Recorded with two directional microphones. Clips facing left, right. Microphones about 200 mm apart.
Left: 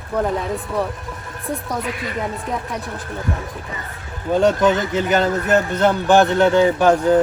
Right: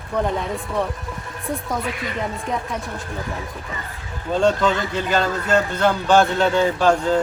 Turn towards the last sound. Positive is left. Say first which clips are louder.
# left 3 dB
turn(degrees=15)  # may be behind; listen again after turning